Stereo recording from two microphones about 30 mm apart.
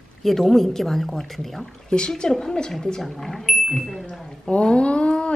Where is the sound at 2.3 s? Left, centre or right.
Left.